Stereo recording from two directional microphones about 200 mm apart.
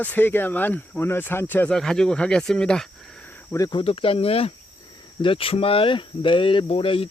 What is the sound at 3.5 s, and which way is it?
Speech, 20° left (ahead or behind).